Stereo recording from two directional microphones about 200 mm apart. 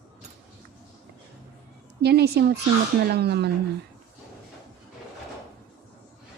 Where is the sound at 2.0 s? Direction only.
55° right (ahead or behind).